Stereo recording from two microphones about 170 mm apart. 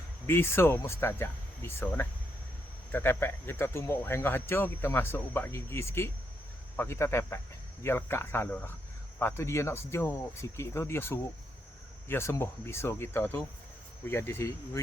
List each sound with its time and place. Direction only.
0.3 s speech: 15° left (ahead or behind)